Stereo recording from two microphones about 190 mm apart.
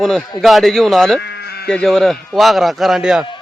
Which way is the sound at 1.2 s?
60° left (ahead or behind).